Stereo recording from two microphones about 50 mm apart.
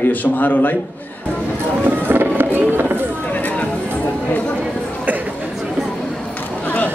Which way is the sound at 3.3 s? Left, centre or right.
Left.